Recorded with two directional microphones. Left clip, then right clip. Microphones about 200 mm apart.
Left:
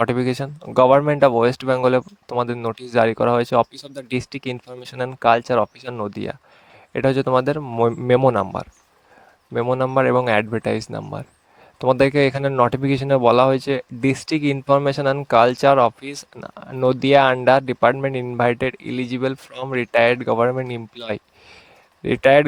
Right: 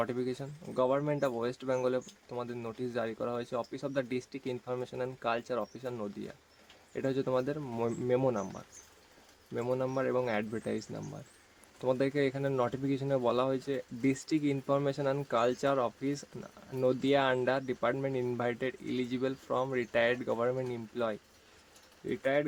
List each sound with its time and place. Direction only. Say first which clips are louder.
0.0 s speech: left 14 dB; 45° left (ahead or behind)
22.0 s speech: left 17 dB; 50° left (ahead or behind)